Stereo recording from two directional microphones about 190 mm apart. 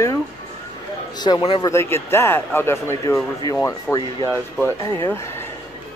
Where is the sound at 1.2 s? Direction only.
20° left (ahead or behind).